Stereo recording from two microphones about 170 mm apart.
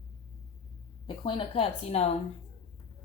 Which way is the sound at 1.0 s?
30° left (ahead or behind).